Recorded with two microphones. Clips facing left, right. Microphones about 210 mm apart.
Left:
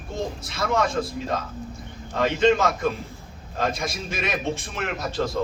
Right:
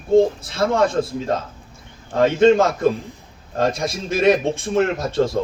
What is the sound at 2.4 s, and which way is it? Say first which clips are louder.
Speech: right 5 dB; 30° right (ahead or behind).